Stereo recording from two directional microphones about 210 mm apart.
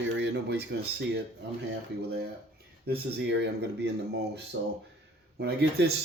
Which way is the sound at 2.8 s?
50° right (ahead or behind).